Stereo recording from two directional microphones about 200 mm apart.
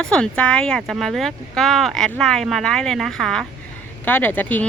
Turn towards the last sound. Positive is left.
turn(degrees=10)  # may be behind; listen again after turning